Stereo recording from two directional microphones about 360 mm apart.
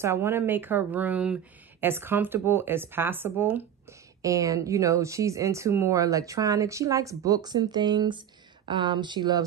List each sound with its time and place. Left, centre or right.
0.0 s speech: centre